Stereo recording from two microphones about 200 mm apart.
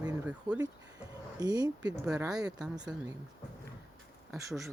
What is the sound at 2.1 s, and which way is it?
Speech, 20° right (ahead or behind).